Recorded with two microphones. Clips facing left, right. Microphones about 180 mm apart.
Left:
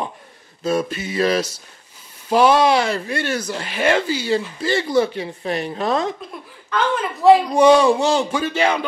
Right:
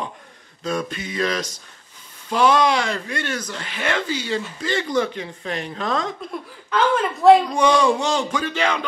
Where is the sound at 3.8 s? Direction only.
30° left (ahead or behind).